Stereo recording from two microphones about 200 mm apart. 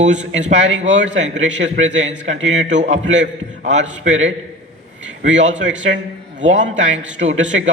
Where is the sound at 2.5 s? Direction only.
35° right (ahead or behind).